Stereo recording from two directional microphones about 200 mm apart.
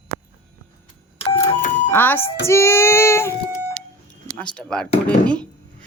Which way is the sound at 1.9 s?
10° left (ahead or behind).